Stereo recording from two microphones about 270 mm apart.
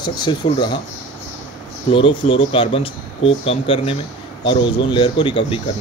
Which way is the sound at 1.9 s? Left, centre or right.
Centre.